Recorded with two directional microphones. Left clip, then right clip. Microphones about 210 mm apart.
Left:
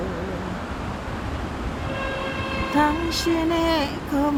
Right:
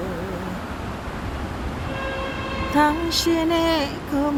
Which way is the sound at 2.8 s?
20° right (ahead or behind).